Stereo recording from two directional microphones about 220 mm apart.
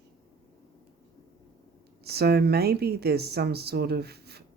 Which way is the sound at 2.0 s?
45° right (ahead or behind).